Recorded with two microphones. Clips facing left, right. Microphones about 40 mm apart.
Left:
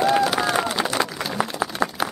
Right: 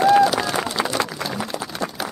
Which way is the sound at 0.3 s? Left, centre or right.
Centre.